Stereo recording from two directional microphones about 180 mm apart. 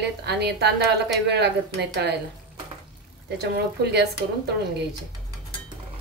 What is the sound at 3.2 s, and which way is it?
Speech, 65° right (ahead or behind).